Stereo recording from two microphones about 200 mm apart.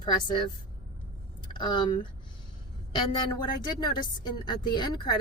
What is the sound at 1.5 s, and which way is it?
Speech, 20° left (ahead or behind).